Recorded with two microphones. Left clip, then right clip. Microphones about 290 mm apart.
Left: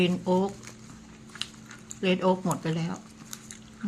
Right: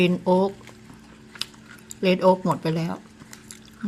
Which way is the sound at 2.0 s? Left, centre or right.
Centre.